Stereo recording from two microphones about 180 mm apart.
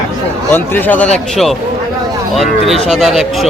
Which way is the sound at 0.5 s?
10° left (ahead or behind).